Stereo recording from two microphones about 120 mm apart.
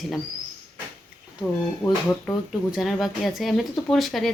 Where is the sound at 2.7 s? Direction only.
5° right (ahead or behind).